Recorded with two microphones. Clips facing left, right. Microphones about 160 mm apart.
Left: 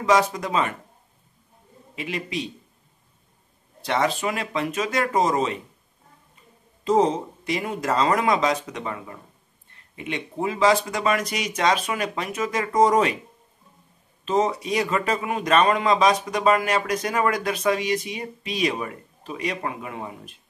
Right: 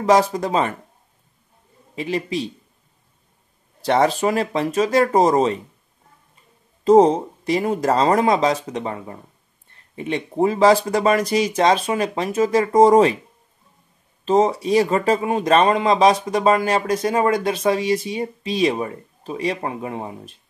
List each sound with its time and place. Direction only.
0.0 s speech: 35° right (ahead or behind)
2.0 s speech: 35° right (ahead or behind)
3.8 s speech: 35° right (ahead or behind)
6.8 s speech: 40° right (ahead or behind)
14.2 s speech: 35° right (ahead or behind)